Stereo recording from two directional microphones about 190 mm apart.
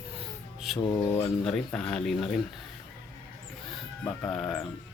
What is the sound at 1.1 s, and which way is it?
Speech, 5° left (ahead or behind).